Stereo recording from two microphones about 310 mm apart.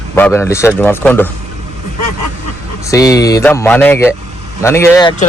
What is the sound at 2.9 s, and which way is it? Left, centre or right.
Speech, centre.